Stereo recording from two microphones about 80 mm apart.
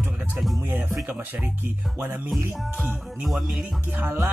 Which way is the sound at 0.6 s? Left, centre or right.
Right.